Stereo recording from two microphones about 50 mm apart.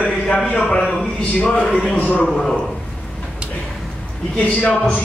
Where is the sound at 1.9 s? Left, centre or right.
Left.